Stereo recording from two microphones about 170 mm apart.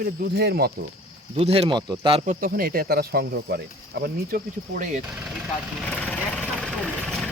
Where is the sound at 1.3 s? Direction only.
35° right (ahead or behind).